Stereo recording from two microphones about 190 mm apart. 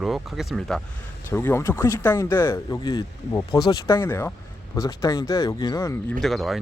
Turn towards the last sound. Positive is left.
turn(degrees=0)  # may be behind; listen again after turning